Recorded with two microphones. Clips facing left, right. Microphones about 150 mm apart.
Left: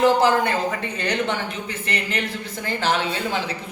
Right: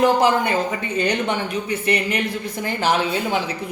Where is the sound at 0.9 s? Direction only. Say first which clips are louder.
Right 6 dB; 10° right (ahead or behind).